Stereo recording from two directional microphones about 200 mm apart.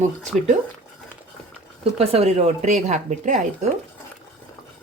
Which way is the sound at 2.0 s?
30° right (ahead or behind).